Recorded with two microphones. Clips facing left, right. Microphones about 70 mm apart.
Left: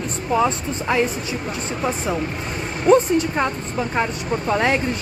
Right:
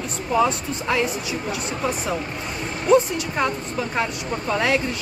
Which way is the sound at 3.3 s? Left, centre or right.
Centre.